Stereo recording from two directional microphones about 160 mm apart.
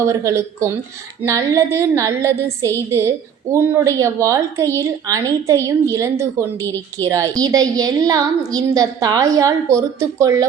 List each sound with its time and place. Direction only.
0.0 s a woman's voice: 20° right (ahead or behind)